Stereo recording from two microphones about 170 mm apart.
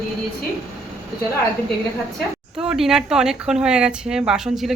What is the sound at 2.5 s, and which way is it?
Speech, 5° right (ahead or behind).